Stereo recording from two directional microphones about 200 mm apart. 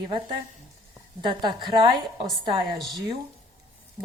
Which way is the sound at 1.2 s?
20° right (ahead or behind).